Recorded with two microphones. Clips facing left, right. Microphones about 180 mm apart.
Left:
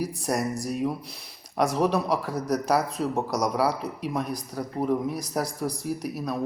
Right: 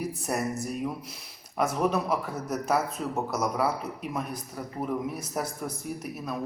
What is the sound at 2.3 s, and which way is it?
Speech, 35° left (ahead or behind).